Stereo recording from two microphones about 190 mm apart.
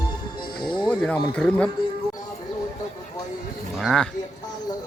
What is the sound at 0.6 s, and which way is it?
Music, 25° left (ahead or behind).